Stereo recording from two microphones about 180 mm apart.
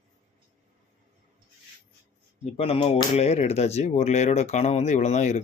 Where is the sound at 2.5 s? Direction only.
35° left (ahead or behind).